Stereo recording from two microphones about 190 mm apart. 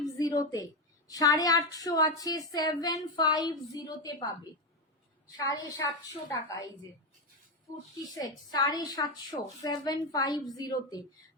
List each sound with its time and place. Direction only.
0.2 s a sound: 20° left (ahead or behind)
1.0 s a woman's voice: 20° left (ahead or behind)
5.4 s a woman's voice: 20° left (ahead or behind)
7.7 s a woman's voice: 15° left (ahead or behind)